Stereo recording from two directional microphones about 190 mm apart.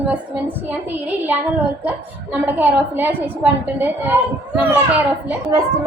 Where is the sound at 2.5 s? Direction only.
10° right (ahead or behind).